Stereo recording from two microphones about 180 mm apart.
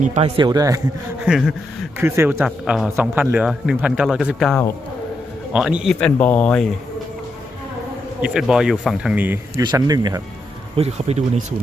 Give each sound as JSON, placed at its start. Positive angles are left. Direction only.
{"t": 0.0, "sound": "a man's voice", "side_deg": -40}
{"t": 0.3, "sound": "speech", "side_deg": -25}
{"t": 1.2, "sound": "speech", "side_deg": -5}
{"t": 8.2, "sound": "speech", "side_deg": -5}
{"t": 10.8, "sound": "speech", "side_deg": -35}